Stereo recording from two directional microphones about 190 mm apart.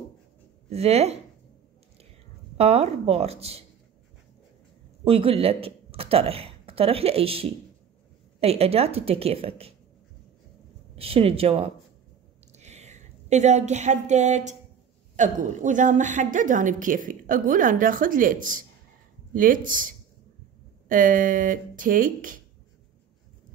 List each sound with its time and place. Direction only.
0.7 s a woman's voice: 35° right (ahead or behind)
2.5 s a woman's voice: 35° right (ahead or behind)
5.0 s a woman's voice: 30° right (ahead or behind)
11.0 s a woman's voice: 30° right (ahead or behind)
20.9 s a woman's voice: 45° right (ahead or behind)